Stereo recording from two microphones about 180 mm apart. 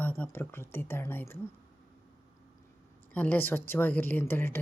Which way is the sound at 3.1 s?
10° left (ahead or behind).